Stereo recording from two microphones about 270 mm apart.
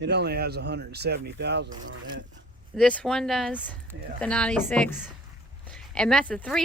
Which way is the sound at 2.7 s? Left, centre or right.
Centre.